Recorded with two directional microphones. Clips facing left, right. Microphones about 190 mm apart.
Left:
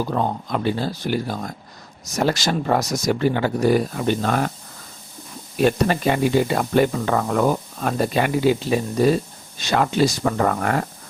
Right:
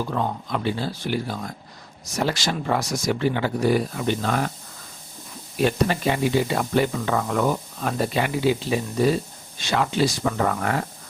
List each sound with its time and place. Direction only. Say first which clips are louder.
0.1 s speech: left 3 dB; 40° left (ahead or behind)
5.6 s speech: left 3 dB; 50° left (ahead or behind)